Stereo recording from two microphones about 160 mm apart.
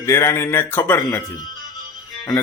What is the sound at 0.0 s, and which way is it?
Speech, 15° left (ahead or behind).